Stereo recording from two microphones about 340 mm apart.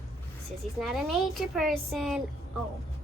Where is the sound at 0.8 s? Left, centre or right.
Centre.